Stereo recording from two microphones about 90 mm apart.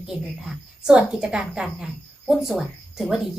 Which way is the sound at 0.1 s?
5° right (ahead or behind).